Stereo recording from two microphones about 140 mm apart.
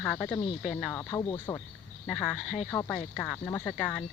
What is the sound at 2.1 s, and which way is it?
Speech, centre (ahead or behind).